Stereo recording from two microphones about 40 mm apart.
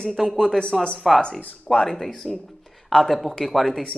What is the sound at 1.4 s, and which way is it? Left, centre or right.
Speech, left.